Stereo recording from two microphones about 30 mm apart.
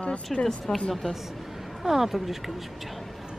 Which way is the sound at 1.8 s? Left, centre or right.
Centre.